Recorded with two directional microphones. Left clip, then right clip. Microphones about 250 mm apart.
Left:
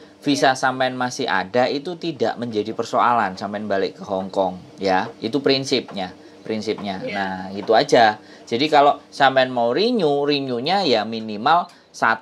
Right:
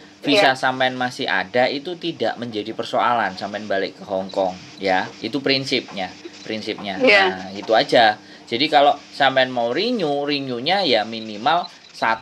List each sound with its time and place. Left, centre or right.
0.2 s speech: left